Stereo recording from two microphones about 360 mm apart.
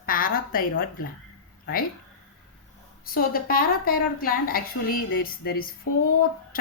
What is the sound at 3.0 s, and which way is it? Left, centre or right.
A woman's voice, left.